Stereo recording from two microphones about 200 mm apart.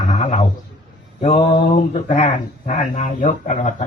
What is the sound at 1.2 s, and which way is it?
Speech, 30° left (ahead or behind).